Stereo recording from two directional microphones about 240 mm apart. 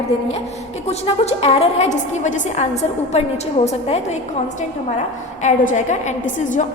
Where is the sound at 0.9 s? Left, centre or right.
Left.